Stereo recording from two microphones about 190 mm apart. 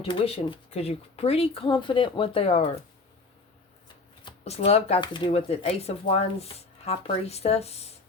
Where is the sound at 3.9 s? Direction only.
30° left (ahead or behind).